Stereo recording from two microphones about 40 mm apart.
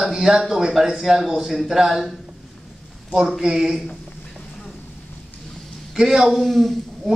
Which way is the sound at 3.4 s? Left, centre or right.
Centre.